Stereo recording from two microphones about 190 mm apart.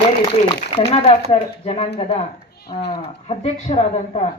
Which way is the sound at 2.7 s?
30° left (ahead or behind).